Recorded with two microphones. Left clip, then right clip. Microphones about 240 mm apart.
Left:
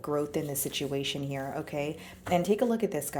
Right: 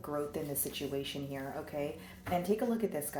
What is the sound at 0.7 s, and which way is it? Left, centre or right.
A woman's voice, left.